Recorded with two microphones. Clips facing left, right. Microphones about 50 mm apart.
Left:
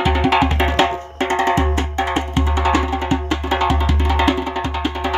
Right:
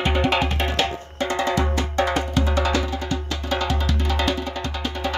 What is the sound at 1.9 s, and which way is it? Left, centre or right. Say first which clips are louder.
Music: even; left.